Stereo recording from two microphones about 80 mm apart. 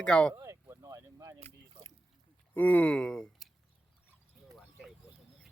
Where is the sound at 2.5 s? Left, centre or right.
Centre.